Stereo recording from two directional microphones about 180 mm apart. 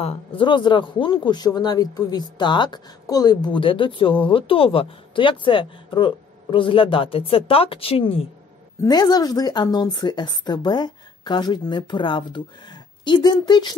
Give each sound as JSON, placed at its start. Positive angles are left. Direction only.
{"t": 0.0, "sound": "speech", "side_deg": 30}
{"t": 8.8, "sound": "speech", "side_deg": 20}